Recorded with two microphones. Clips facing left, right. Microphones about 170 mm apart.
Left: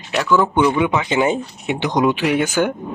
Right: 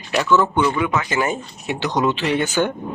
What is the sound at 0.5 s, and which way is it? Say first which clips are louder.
Speech: left 3 dB; 20° left (ahead or behind).